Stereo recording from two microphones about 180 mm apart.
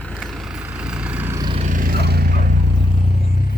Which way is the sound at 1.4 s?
30° right (ahead or behind).